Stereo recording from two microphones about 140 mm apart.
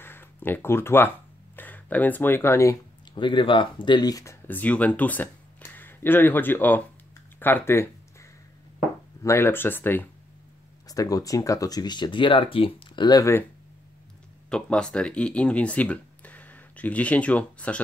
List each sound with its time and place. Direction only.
0.0 s a sound: 15° left (ahead or behind)
1.6 s speech: 10° left (ahead or behind)
3.2 s speech: 35° left (ahead or behind); by 6.8 s 15° left (ahead or behind)
7.3 s a sound: 15° left (ahead or behind)
9.2 s speech: 20° left (ahead or behind)
10.9 s speech: 25° left (ahead or behind)
14.5 s speech: 5° left (ahead or behind)